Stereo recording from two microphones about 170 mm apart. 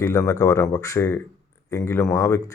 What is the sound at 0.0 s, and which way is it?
Speech, 15° left (ahead or behind).